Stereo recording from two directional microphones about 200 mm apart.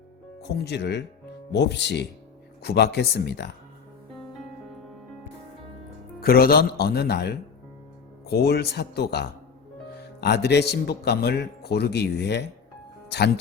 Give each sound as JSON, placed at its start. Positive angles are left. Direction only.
{"t": 0.4, "sound": "speech", "side_deg": 55}
{"t": 6.1, "sound": "speech", "side_deg": 50}